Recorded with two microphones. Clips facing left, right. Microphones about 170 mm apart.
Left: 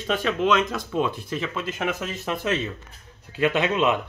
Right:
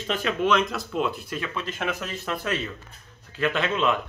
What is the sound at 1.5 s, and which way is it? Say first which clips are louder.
Speech: left 2 dB; 15° left (ahead or behind).